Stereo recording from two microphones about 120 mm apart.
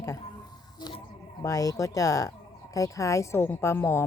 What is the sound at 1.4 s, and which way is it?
A woman's voice, 30° left (ahead or behind).